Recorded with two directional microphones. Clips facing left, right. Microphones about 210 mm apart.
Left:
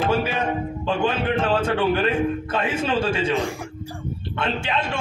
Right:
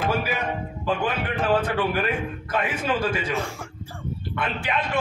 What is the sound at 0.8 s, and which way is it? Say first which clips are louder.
A man's voice: left 3 dB; 25° left (ahead or behind).